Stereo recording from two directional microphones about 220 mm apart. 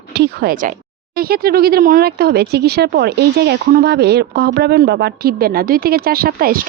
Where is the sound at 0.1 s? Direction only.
45° right (ahead or behind).